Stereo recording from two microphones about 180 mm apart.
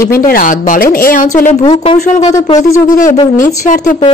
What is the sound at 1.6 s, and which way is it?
Speech, 25° left (ahead or behind).